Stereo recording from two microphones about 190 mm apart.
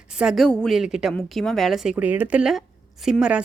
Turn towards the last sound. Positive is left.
turn(degrees=-5)  # may be behind; listen again after turning